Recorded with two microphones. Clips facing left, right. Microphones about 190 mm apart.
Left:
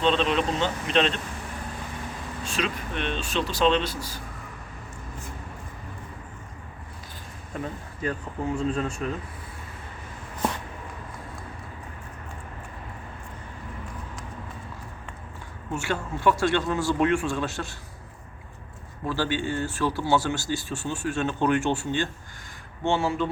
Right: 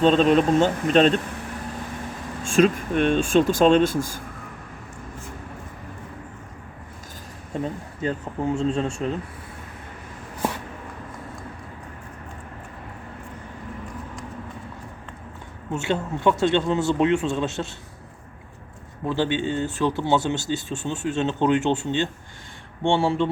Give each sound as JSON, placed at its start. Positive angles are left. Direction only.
{"t": 0.0, "sound": "speech", "side_deg": -45}
{"t": 2.4, "sound": "speech", "side_deg": -45}
{"t": 7.5, "sound": "speech", "side_deg": -25}
{"t": 15.7, "sound": "speech", "side_deg": -20}
{"t": 19.0, "sound": "speech", "side_deg": -20}